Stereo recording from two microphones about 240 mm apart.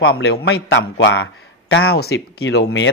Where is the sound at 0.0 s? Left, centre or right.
Left.